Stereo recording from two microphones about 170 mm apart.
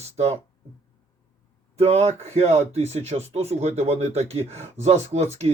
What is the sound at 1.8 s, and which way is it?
Speech, 40° right (ahead or behind).